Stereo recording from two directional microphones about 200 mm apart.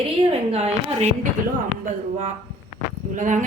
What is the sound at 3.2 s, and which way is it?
Speech, 40° right (ahead or behind).